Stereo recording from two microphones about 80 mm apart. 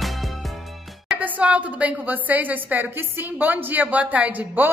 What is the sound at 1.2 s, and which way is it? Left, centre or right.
A woman's voice, centre.